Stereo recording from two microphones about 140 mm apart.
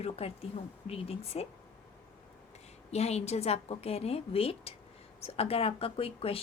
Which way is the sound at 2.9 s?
50° left (ahead or behind).